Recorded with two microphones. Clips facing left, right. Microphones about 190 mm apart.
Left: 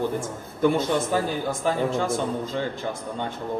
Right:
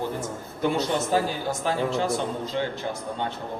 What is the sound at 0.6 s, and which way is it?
A man's voice, 50° left (ahead or behind).